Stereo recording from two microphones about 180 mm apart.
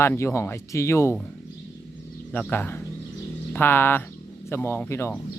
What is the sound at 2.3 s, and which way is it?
Speech, 10° left (ahead or behind).